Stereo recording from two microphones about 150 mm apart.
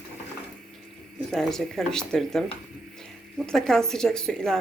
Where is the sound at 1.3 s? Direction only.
Centre (ahead or behind).